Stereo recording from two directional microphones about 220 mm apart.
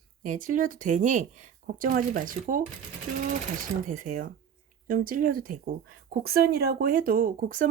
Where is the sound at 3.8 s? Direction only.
35° right (ahead or behind).